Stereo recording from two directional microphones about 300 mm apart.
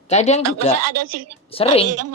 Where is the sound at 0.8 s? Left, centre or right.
Right.